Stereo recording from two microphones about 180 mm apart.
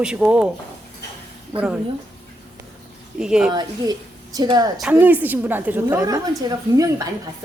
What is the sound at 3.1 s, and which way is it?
Speech, 5° right (ahead or behind).